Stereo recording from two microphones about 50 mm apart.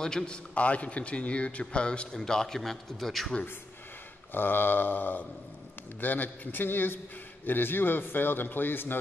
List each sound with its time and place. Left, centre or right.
0.0 s a man's voice: centre
0.6 s a man's voice: left
2.1 s a man's voice: centre
4.3 s a man's voice: left